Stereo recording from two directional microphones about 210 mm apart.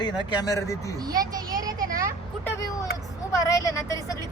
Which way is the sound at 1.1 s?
15° right (ahead or behind).